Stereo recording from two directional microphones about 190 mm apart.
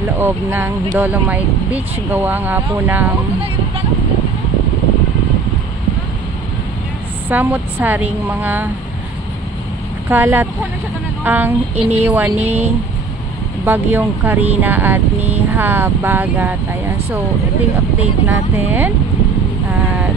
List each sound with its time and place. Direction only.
0.2 s speech: 10° right (ahead or behind)
7.2 s speech: 10° right (ahead or behind)
10.0 s speech: 10° right (ahead or behind)
18.2 s speech: 10° right (ahead or behind)